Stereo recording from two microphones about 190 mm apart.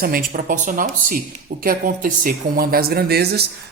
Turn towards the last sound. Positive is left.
turn(degrees=-55)  # may be behind; listen again after turning